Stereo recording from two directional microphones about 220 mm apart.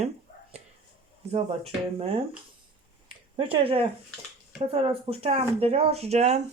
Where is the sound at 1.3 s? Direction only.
25° right (ahead or behind).